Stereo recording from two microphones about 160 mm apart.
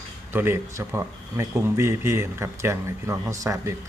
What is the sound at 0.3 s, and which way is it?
A man's voice, 15° right (ahead or behind).